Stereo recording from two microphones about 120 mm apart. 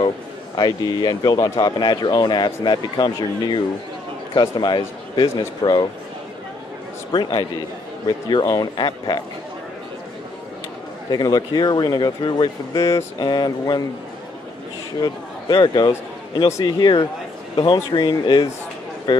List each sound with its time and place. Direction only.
0.6 s speech: 35° left (ahead or behind)
7.1 s speech: 35° left (ahead or behind)
11.1 s speech: 35° left (ahead or behind)
12.7 s speech: 25° left (ahead or behind)
13.2 s speech: 40° left (ahead or behind)
15.0 s speech: 35° left (ahead or behind)